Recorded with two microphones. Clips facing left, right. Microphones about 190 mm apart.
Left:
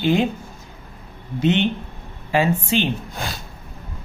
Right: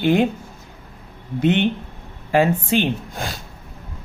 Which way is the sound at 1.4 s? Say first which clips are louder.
Right 1 dB; 55° right (ahead or behind).